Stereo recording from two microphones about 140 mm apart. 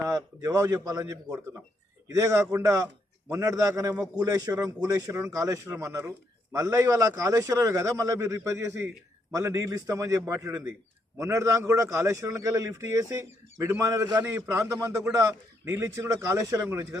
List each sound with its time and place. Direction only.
0.0 s a man's voice: 25° right (ahead or behind)